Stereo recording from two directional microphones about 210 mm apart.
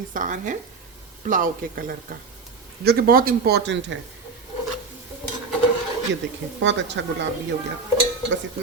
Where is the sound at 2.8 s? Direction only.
45° right (ahead or behind).